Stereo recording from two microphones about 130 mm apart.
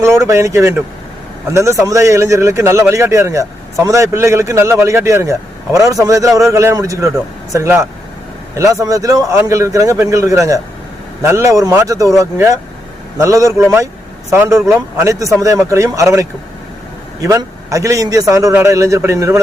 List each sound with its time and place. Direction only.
0.0 s a man's voice: 20° right (ahead or behind)